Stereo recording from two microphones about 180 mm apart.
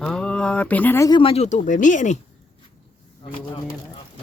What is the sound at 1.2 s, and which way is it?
Speech, 35° left (ahead or behind).